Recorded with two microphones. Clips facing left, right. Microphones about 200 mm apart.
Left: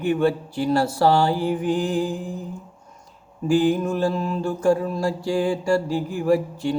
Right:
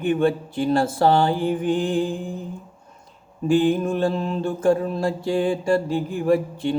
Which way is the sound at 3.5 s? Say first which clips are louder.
Even; 25° right (ahead or behind).